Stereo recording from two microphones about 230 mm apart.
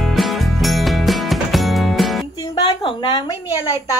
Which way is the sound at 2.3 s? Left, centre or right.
Centre.